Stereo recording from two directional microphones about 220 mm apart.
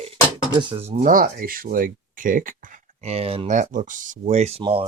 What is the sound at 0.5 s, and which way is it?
Speech, 20° right (ahead or behind).